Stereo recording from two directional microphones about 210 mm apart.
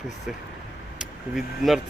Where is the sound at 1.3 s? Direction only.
Centre (ahead or behind).